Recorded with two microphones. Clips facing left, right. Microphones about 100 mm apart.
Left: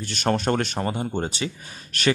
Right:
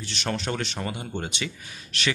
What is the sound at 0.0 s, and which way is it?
Speech, 45° left (ahead or behind).